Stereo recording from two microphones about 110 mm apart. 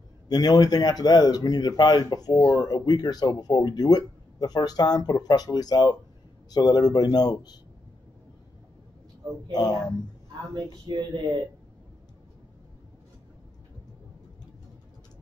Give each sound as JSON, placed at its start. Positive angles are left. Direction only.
{"t": 0.3, "sound": "speech", "side_deg": 40}
{"t": 9.5, "sound": "speech", "side_deg": 35}
{"t": 10.5, "sound": "speech", "side_deg": -45}